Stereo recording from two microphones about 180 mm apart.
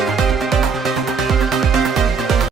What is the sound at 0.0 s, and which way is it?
Music, centre (ahead or behind).